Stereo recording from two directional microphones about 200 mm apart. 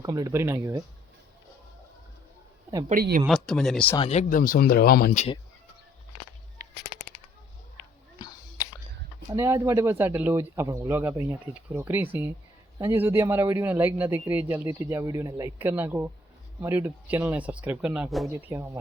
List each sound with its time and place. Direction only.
0.0 s a man's voice: 20° right (ahead or behind)
2.9 s speech: 45° right (ahead or behind)
3.2 s speech: centre (ahead or behind)
3.9 s speech: 30° left (ahead or behind); by 5.2 s 50° left (ahead or behind)
8.2 s whispering: 20° left (ahead or behind)
9.3 s a man's voice: 15° right (ahead or behind)